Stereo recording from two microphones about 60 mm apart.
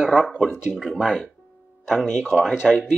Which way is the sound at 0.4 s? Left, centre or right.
Centre.